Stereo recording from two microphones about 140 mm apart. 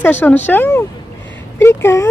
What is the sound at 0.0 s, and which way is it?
Speech, 15° left (ahead or behind).